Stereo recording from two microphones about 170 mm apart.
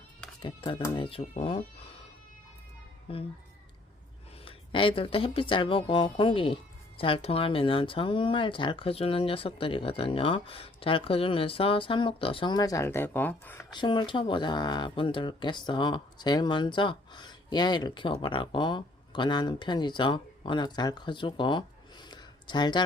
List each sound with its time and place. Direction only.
0.4 s speech: 30° left (ahead or behind)
3.1 s speech: 35° left (ahead or behind)
4.4 s speech: 30° left (ahead or behind); by 13.7 s 10° left (ahead or behind)
13.7 s speech: 25° left (ahead or behind)
22.1 s a sound: 25° left (ahead or behind)